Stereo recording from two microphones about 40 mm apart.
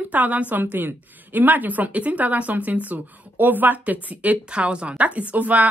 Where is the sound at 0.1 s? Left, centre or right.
Right.